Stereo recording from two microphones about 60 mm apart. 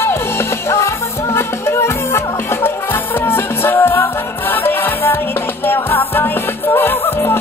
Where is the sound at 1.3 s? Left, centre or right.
Left.